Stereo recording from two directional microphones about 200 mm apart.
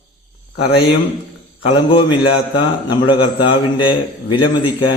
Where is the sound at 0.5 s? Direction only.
25° left (ahead or behind).